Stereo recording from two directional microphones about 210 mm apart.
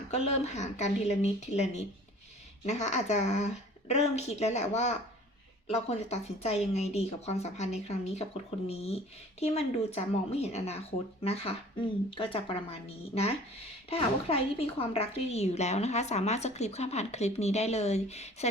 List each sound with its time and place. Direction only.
0.1 s a woman's voice: 30° left (ahead or behind)
13.9 s a woman's voice: 25° left (ahead or behind)